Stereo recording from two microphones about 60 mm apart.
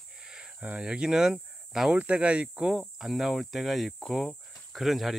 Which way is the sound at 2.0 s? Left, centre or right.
Right.